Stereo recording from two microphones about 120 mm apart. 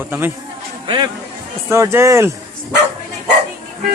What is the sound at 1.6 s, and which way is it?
Speech, 25° right (ahead or behind).